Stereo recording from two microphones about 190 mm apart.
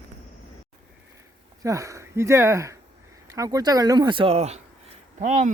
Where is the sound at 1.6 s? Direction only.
15° right (ahead or behind).